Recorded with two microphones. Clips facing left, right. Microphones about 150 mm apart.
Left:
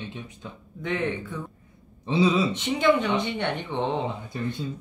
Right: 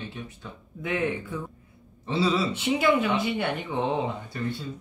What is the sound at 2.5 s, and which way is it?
Speech, 10° right (ahead or behind).